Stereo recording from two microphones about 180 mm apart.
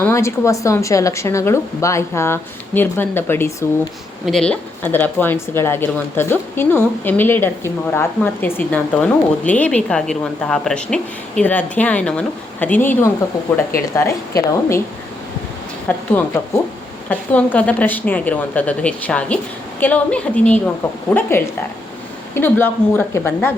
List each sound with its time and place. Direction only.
0.0 s speech: 15° left (ahead or behind)
15.9 s speech: 10° left (ahead or behind)
17.1 s speech: 10° left (ahead or behind)